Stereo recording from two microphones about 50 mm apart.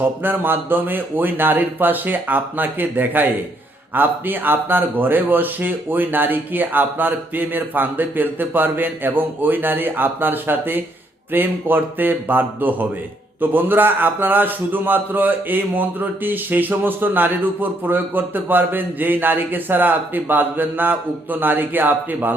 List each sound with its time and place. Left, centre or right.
0.0 s a man's voice: right